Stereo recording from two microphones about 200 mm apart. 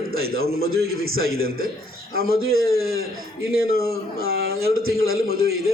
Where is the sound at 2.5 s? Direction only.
90° right.